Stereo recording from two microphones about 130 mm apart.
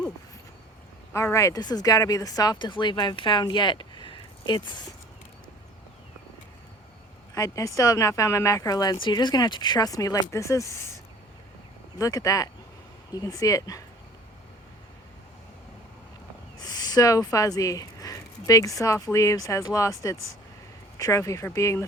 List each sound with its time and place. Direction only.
1.1 s a woman's voice: 20° left (ahead or behind)
7.3 s speech: 25° left (ahead or behind)
16.6 s speech: 30° left (ahead or behind)